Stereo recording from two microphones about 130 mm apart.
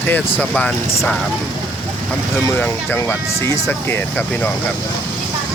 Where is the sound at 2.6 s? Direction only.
15° left (ahead or behind).